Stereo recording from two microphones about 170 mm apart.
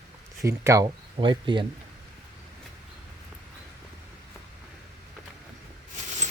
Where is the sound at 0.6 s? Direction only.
20° right (ahead or behind).